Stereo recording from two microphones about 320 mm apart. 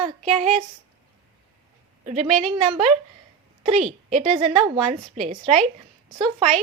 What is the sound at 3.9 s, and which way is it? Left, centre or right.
A woman's voice, right.